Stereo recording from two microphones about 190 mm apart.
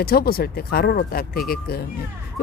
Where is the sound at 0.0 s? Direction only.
50° left (ahead or behind).